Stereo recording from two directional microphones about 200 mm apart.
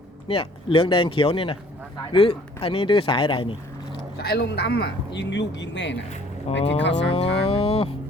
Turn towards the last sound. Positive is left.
turn(degrees=30)  # may be behind; listen again after turning